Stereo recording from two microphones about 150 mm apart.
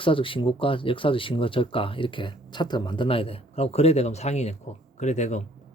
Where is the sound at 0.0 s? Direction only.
35° left (ahead or behind).